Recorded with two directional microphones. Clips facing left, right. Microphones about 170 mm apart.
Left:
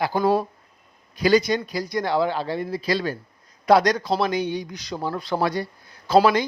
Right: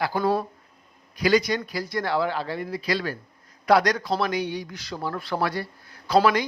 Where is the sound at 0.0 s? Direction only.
20° left (ahead or behind).